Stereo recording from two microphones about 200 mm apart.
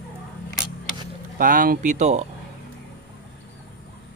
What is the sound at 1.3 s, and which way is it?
Speech, 45° right (ahead or behind).